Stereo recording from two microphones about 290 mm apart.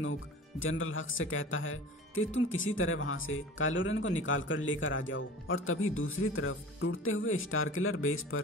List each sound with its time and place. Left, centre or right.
0.6 s speech: left